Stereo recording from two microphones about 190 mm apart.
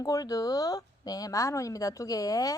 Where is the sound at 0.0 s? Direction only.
20° left (ahead or behind).